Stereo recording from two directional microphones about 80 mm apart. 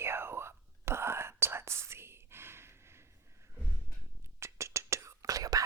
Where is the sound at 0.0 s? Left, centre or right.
Right.